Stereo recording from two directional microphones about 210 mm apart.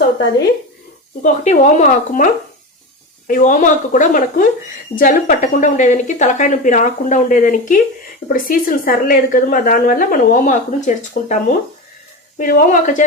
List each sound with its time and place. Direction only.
1.2 s a woman's voice: 35° left (ahead or behind)
12.4 s a woman's voice: 40° left (ahead or behind)